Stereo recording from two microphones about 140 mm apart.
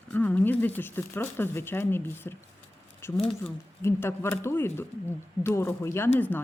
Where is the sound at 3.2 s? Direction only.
40° left (ahead or behind).